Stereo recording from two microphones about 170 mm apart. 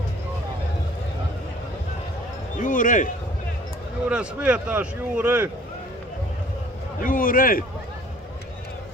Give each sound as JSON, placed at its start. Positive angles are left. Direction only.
{"t": 2.5, "sound": "a man's voice", "side_deg": 50}
{"t": 4.1, "sound": "speech", "side_deg": -5}
{"t": 7.0, "sound": "a man's voice", "side_deg": 55}